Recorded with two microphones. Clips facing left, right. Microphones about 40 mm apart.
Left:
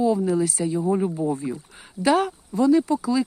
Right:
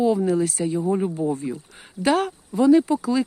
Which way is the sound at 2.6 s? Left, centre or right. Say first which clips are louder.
Right 2 dB; centre.